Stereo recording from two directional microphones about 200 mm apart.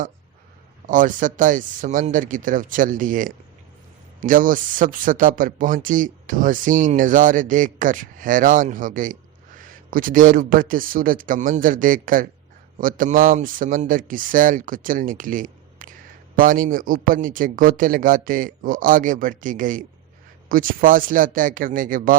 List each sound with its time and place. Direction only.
0.9 s a man's voice: 40° right (ahead or behind)